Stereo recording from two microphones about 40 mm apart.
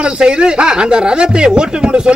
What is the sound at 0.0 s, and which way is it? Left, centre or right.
Speech, right.